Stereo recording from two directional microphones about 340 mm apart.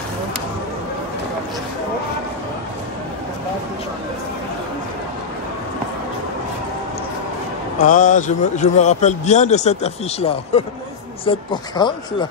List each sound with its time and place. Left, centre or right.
7.8 s a man's voice: left